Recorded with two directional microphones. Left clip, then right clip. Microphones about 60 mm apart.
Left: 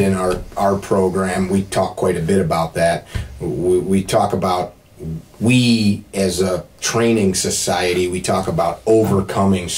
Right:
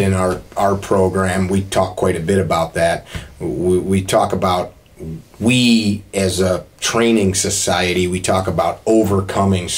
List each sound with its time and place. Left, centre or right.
0.0 s speech: right